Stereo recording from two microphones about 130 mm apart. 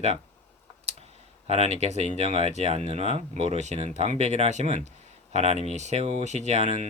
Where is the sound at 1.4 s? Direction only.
55° right (ahead or behind).